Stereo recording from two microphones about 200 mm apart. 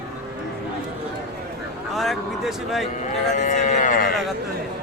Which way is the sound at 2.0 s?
Centre (ahead or behind).